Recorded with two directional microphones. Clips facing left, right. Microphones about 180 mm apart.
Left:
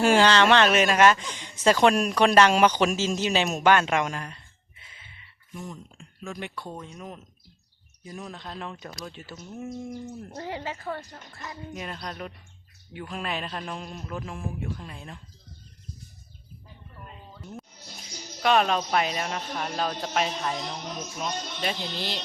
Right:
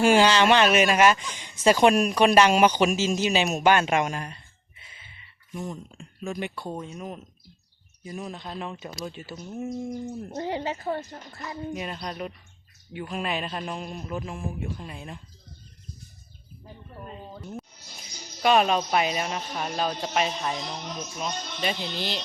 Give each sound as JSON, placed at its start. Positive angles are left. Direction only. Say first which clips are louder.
{"t": 0.0, "sound": "a man's voice", "louder": "right 1 dB", "side_deg": -10}
{"t": 6.2, "sound": "a man's voice", "louder": "right 4 dB", "side_deg": -15}
{"t": 9.6, "sound": "a man's voice", "louder": "right 3 dB", "side_deg": -20}
{"t": 16.9, "sound": "music", "louder": "right 7 dB", "side_deg": -35}
{"t": 18.4, "sound": "a man's voice", "louder": "right 2 dB", "side_deg": -5}